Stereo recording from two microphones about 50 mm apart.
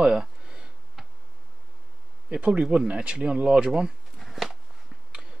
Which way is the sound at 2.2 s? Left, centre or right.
Right.